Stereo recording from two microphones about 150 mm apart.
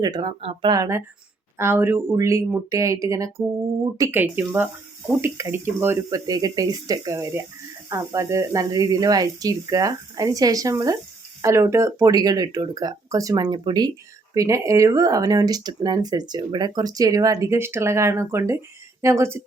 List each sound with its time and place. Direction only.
0.0 s speech: 25° right (ahead or behind)